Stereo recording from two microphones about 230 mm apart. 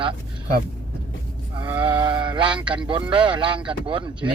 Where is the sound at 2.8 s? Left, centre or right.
Right.